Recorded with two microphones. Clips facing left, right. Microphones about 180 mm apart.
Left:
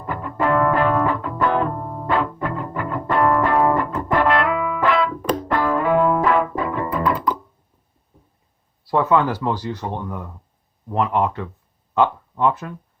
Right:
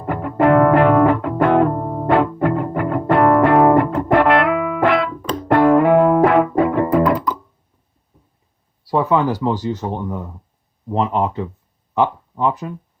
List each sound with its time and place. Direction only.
0.0 s music: 55° right (ahead or behind)
2.0 s music: 60° right (ahead or behind)
8.9 s speech: 15° right (ahead or behind)